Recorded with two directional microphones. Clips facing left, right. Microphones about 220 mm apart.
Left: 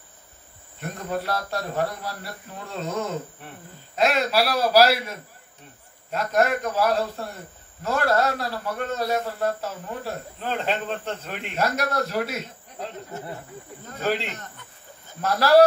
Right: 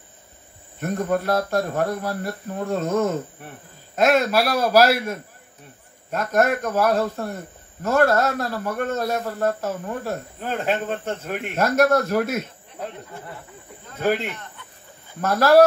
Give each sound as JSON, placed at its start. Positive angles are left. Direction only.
{"t": 0.7, "sound": "speech", "side_deg": -50}
{"t": 6.1, "sound": "speech", "side_deg": -50}
{"t": 14.0, "sound": "speech", "side_deg": -50}